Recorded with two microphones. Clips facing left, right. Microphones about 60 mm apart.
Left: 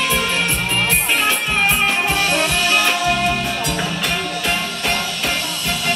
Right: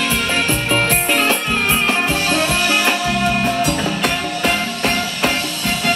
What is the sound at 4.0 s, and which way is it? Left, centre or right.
Music, right.